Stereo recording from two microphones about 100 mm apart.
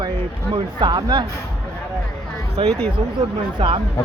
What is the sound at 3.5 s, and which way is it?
Speech, 60° right (ahead or behind).